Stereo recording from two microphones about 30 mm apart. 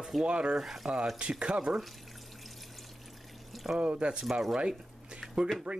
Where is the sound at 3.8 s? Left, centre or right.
Right.